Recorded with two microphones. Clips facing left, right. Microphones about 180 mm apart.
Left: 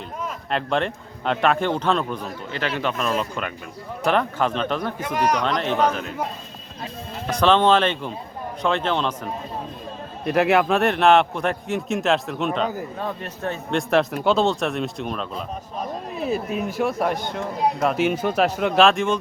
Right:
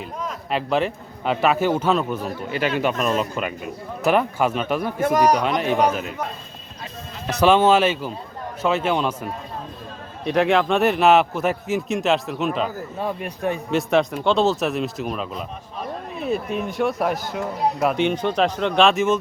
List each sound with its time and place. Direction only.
0.5 s speech: 5° right (ahead or behind)
5.0 s speech: 40° right (ahead or behind)
5.4 s speech: 5° right (ahead or behind)
7.3 s speech: 10° right (ahead or behind)
10.2 s speech: 5° left (ahead or behind); by 13.6 s 15° right (ahead or behind)
13.7 s speech: centre (ahead or behind)